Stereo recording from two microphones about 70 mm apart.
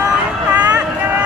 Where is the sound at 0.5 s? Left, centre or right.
Right.